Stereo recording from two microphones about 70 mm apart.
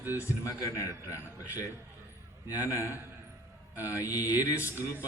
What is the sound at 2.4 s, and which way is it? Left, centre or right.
A man's voice, left.